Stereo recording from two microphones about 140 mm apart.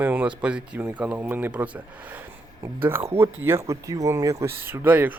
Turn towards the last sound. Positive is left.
turn(degrees=-10)  # may be behind; listen again after turning